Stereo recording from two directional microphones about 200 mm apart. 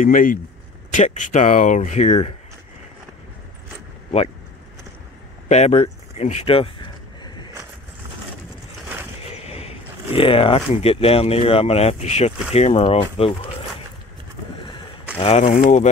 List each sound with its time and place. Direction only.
0.0 s speech: 45° left (ahead or behind)
5.5 s a sound: 35° left (ahead or behind)
9.3 s speech: 30° left (ahead or behind)
15.1 s speech: 30° left (ahead or behind)